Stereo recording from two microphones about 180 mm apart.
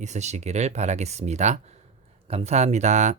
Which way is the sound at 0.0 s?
40° right (ahead or behind).